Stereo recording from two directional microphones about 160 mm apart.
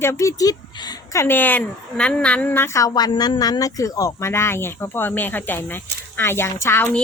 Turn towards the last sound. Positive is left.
turn(degrees=15)  # may be behind; listen again after turning